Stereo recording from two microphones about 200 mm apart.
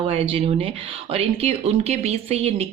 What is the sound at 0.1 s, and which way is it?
Speech, 30° right (ahead or behind).